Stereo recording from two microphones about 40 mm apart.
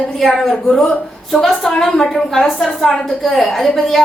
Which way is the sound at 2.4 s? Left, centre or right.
Centre.